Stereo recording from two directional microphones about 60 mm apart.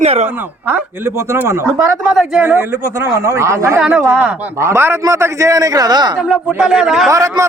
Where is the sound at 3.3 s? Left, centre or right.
Right.